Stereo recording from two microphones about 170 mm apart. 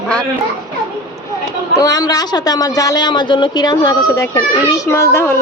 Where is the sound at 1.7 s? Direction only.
20° left (ahead or behind).